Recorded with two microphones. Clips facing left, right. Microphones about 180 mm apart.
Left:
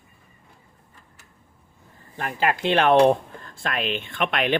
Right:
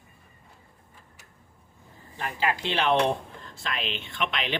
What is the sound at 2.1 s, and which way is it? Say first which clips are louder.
Speech: left 4 dB; 55° left (ahead or behind).